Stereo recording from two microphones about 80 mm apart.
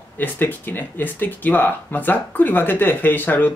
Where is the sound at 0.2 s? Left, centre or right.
Left.